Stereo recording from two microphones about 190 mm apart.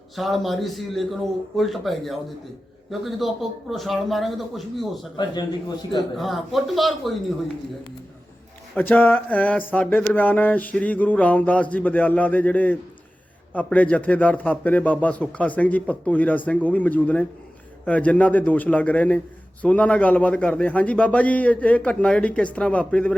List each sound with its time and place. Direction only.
0.2 s a man's voice: centre (ahead or behind)
5.1 s a man's voice: 20° left (ahead or behind)
6.1 s a man's voice: centre (ahead or behind)
8.7 s a sound: 10° left (ahead or behind)
22.5 s a man's voice: 5° left (ahead or behind)